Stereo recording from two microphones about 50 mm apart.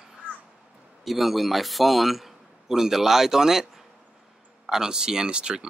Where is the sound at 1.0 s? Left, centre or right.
Centre.